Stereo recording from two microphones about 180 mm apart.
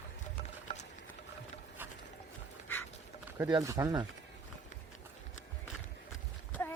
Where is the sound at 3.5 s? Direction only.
20° right (ahead or behind).